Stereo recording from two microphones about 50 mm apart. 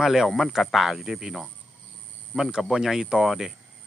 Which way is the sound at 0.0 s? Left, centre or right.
Centre.